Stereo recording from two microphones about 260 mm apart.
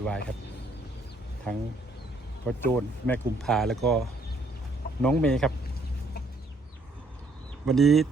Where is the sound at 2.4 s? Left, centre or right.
Centre.